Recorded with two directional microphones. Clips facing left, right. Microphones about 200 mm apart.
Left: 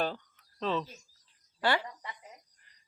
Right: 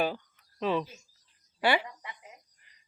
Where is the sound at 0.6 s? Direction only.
10° right (ahead or behind).